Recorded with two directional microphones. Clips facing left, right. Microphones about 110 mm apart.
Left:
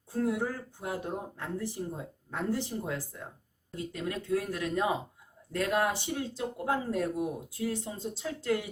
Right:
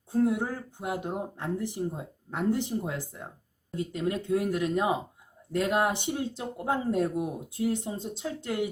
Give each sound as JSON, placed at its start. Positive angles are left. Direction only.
{"t": 0.3, "sound": "speech", "side_deg": -20}
{"t": 3.9, "sound": "speech", "side_deg": -20}